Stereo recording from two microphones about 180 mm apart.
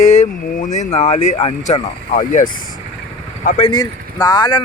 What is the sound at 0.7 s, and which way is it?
Speech, 40° left (ahead or behind).